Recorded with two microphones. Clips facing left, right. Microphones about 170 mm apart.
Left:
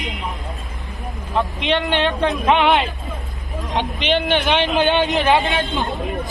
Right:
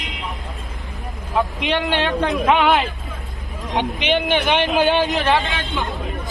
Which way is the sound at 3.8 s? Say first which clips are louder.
Even; 15° right (ahead or behind).